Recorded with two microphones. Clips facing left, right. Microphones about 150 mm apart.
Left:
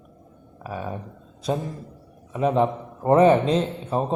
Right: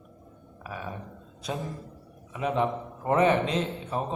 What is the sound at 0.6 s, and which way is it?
A man's voice, 35° left (ahead or behind).